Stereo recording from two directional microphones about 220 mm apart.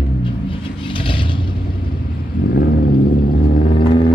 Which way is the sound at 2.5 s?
45° left (ahead or behind).